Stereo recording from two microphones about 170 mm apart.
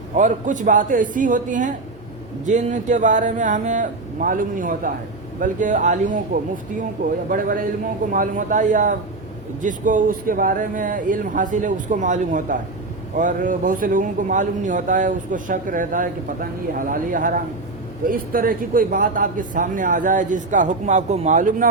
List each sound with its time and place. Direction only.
0.2 s a man's voice: 50° right (ahead or behind)
7.3 s a man's voice: 55° right (ahead or behind)